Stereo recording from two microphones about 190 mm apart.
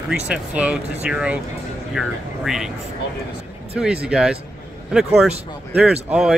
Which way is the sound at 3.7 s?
5° right (ahead or behind).